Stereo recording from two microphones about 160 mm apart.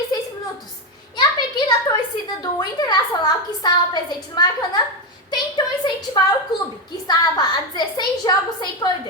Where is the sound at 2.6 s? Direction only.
25° left (ahead or behind).